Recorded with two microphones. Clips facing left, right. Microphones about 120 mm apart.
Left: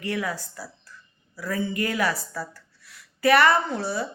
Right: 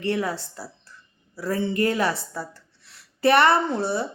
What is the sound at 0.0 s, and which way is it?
Speech, 30° right (ahead or behind).